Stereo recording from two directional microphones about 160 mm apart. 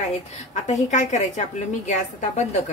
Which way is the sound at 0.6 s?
45° left (ahead or behind).